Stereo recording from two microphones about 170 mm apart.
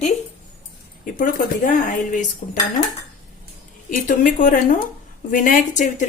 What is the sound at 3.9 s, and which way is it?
Speech, 50° left (ahead or behind).